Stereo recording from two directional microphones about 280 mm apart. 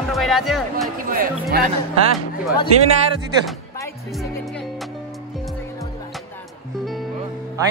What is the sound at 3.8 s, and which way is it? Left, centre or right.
Music, centre.